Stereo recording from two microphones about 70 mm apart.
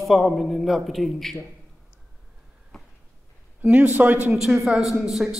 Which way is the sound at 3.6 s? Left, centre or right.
Right.